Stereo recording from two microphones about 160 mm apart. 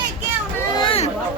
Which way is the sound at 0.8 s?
35° left (ahead or behind).